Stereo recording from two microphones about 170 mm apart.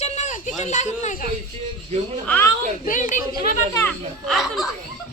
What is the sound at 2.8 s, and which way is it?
Speech, 50° left (ahead or behind).